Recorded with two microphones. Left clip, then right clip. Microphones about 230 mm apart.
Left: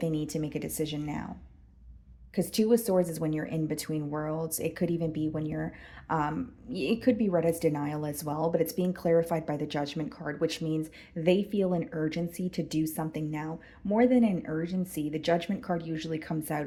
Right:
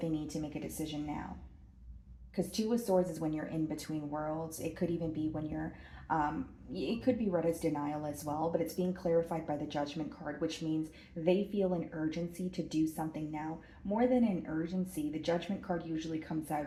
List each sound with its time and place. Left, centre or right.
0.0 s speech: left
2.3 s speech: left